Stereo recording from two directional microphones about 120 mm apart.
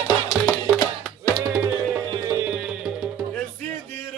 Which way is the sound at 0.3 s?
10° right (ahead or behind).